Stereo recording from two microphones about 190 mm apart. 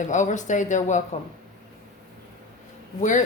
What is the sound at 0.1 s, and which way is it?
Speech, 40° left (ahead or behind).